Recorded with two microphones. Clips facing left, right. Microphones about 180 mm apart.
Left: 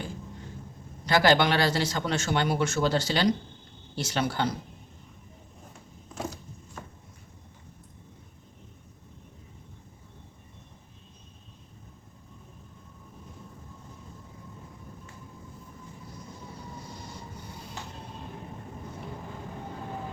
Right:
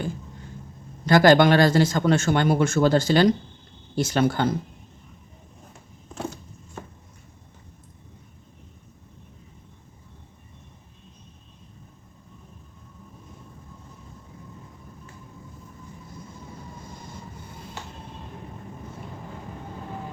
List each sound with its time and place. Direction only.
1.0 s a man's voice: 50° right (ahead or behind)